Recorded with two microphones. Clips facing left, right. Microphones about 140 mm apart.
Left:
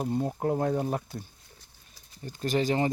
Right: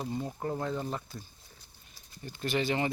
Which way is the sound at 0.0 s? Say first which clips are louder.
Left 6 dB; 50° left (ahead or behind).